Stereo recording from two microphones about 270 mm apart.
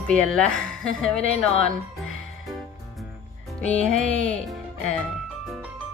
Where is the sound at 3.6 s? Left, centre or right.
Centre.